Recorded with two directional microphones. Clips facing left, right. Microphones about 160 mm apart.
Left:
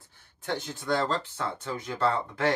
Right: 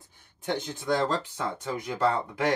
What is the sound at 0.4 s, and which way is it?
Speech, 15° right (ahead or behind).